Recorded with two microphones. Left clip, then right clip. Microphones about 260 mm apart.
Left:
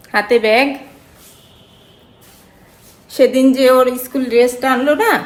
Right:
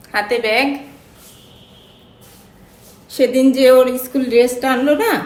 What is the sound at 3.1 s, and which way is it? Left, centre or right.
A woman's voice, left.